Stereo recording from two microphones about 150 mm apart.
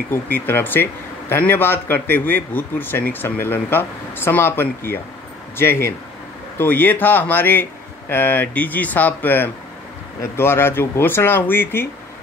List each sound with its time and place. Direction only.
0.1 s a man's voice: 15° left (ahead or behind)